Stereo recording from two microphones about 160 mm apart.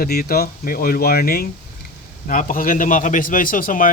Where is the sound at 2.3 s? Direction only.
55° left (ahead or behind).